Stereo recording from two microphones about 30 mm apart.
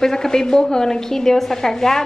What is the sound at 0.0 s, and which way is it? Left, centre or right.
A woman's voice, centre.